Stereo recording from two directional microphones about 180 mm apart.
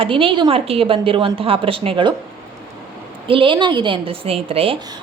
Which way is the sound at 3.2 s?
30° right (ahead or behind).